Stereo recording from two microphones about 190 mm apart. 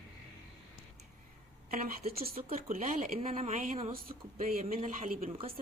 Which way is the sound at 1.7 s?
50° right (ahead or behind).